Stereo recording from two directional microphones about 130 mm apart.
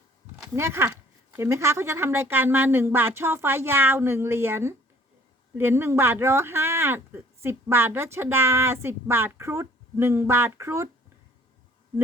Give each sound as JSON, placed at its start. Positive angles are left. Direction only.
{"t": 0.4, "sound": "speech", "side_deg": -20}